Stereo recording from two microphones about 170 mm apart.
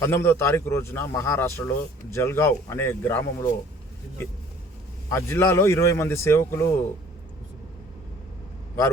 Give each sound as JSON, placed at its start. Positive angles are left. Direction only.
{"t": 0.0, "sound": "a man's voice", "side_deg": 15}
{"t": 5.0, "sound": "a man's voice", "side_deg": 20}